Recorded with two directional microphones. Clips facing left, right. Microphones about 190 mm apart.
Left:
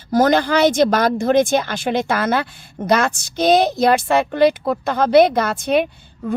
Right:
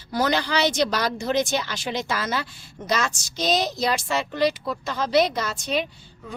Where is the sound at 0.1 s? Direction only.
50° left (ahead or behind).